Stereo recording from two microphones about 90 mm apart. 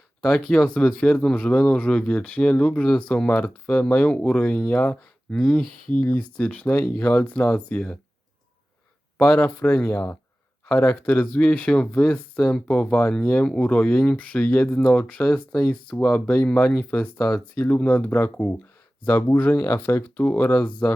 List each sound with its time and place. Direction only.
0.4 s speech: 5° left (ahead or behind)
9.2 s speech: 25° left (ahead or behind)